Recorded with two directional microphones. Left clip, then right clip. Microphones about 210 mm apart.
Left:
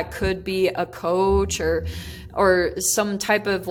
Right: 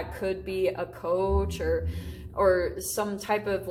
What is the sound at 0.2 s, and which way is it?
Speech, 50° left (ahead or behind).